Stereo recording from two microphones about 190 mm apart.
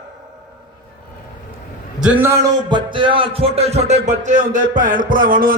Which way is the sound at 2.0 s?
10° right (ahead or behind).